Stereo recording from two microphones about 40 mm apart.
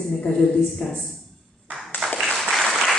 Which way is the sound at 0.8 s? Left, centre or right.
Centre.